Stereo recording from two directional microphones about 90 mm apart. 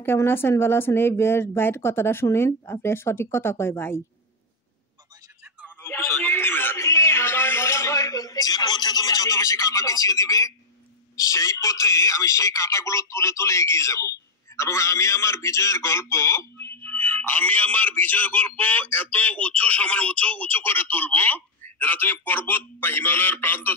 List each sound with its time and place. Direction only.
0.0 s a man's voice: 25° left (ahead or behind)
5.8 s a sound: 30° left (ahead or behind)
11.1 s a man's voice: 35° left (ahead or behind)